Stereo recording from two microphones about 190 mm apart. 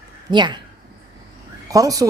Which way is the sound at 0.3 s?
25° right (ahead or behind).